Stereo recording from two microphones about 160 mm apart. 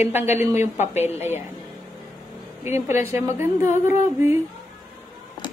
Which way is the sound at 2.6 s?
15° right (ahead or behind).